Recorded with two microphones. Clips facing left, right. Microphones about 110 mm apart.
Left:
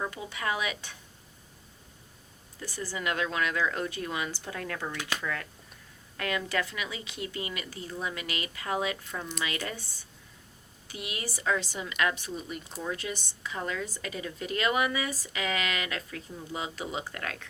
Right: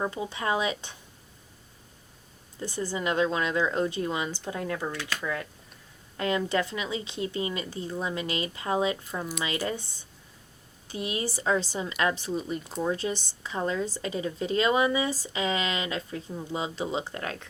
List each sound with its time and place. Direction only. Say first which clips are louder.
0.0 s a woman's voice: right 4 dB; 25° right (ahead or behind)
2.6 s a woman's voice: right 5 dB; 25° right (ahead or behind)
4.9 s speech: right 1 dB; 20° left (ahead or behind)
5.2 s a woman's voice: right 3 dB; 20° right (ahead or behind)
10.8 s a woman's voice: right 7 dB; 30° right (ahead or behind)